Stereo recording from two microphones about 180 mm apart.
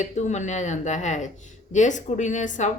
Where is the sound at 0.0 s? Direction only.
40° left (ahead or behind).